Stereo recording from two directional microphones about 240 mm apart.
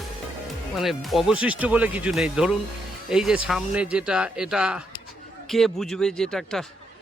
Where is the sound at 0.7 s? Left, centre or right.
Centre.